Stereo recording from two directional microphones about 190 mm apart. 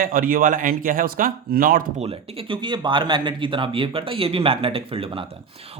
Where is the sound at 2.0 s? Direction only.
30° right (ahead or behind).